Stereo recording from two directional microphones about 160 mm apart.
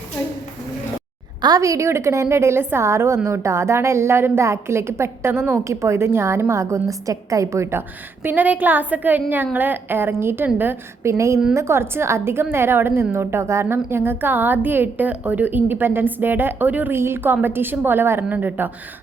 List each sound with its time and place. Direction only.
1.4 s a woman's voice: 25° right (ahead or behind)